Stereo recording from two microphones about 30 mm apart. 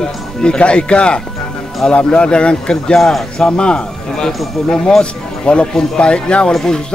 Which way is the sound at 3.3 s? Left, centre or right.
Left.